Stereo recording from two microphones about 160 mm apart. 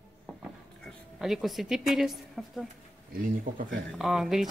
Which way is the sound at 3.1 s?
60° right (ahead or behind).